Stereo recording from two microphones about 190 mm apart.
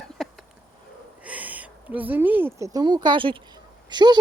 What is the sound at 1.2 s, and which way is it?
Speech, 5° right (ahead or behind).